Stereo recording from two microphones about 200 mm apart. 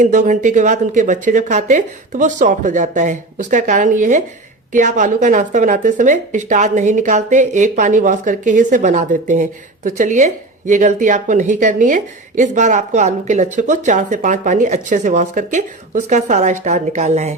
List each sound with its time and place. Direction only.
0.0 s speech: 40° right (ahead or behind)